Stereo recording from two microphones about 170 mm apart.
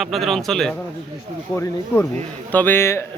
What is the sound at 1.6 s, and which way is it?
Speech, 15° left (ahead or behind).